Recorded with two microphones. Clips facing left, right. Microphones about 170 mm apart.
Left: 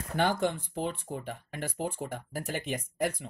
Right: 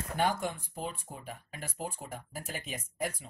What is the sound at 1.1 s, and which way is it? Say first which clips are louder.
Speech: left 6 dB; 65° left (ahead or behind).